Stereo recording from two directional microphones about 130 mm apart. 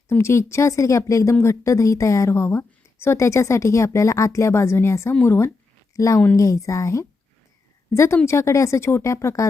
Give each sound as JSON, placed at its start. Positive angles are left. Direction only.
{"t": 0.1, "sound": "a woman's voice", "side_deg": 20}